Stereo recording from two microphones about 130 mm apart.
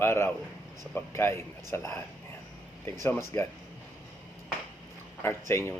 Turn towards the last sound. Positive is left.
turn(degrees=20)  # may be behind; listen again after turning